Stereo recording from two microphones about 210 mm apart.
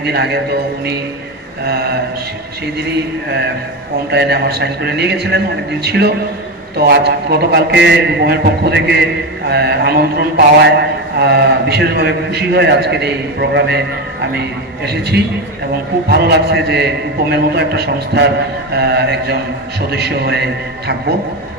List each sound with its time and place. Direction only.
0.0 s a man's voice: 50° right (ahead or behind)
1.6 s a man's voice: 50° right (ahead or behind)
4.1 s a man's voice: 50° right (ahead or behind)